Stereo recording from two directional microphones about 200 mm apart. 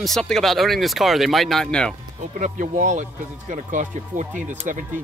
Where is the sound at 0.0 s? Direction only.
Centre (ahead or behind).